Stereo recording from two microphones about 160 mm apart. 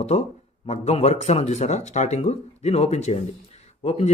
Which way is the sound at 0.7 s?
40° left (ahead or behind).